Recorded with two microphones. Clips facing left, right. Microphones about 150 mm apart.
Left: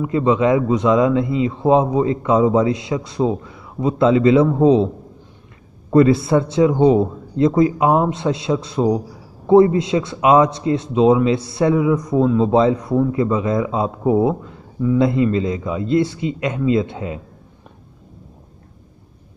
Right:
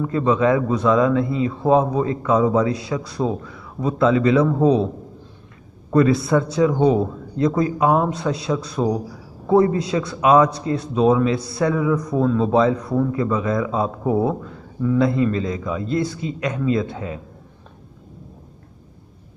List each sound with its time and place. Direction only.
0.0 s a man's voice: 20° left (ahead or behind)
5.9 s a man's voice: 25° left (ahead or behind)